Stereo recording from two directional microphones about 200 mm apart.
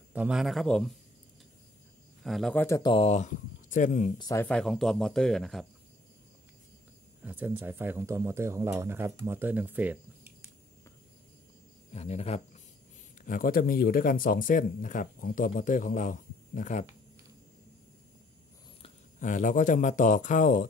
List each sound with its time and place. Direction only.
0.1 s speech: 5° right (ahead or behind)
2.2 s speech: centre (ahead or behind)
2.9 s speech: 30° left (ahead or behind)
4.2 s speech: 15° left (ahead or behind)
4.5 s speech: 5° left (ahead or behind)
7.2 s speech: 10° right (ahead or behind)
11.9 s speech: 30° left (ahead or behind)
13.2 s speech: 45° left (ahead or behind)
18.8 s speech: 40° left (ahead or behind)